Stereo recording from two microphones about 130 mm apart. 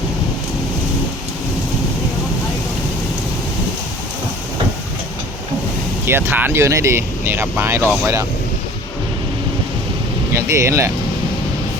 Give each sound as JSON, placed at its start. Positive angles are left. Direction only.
{"t": 6.1, "sound": "speech", "side_deg": -20}
{"t": 10.3, "sound": "speech", "side_deg": -20}